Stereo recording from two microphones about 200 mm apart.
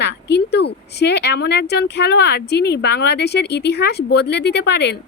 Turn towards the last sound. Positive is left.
turn(degrees=60)  # may be behind; listen again after turning